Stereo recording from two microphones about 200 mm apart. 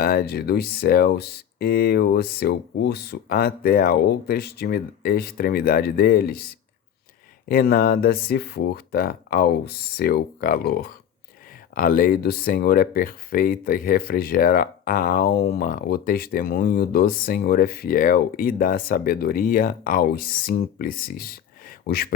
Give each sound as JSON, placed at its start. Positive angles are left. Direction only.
{"t": 0.0, "sound": "speech", "side_deg": 50}
{"t": 7.4, "sound": "speech", "side_deg": 45}